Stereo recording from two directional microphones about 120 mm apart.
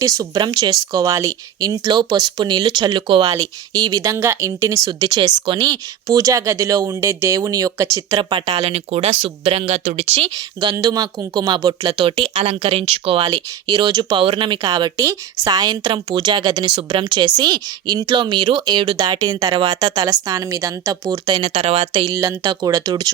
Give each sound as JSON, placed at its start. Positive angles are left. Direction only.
{"t": 0.0, "sound": "a woman's voice", "side_deg": -30}
{"t": 8.2, "sound": "speech", "side_deg": -45}
{"t": 10.2, "sound": "speech", "side_deg": -35}
{"t": 12.4, "sound": "speech", "side_deg": -55}
{"t": 13.3, "sound": "speech", "side_deg": -35}
{"t": 22.1, "sound": "speech", "side_deg": -30}